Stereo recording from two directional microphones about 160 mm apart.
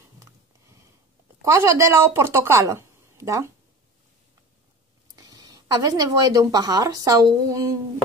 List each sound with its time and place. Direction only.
1.4 s a woman's voice: 20° right (ahead or behind)
5.1 s speech: 20° right (ahead or behind)